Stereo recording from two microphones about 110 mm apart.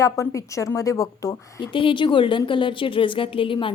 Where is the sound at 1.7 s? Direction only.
50° left (ahead or behind).